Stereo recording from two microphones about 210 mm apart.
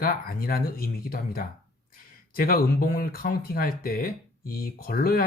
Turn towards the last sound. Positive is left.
turn(degrees=45)  # may be behind; listen again after turning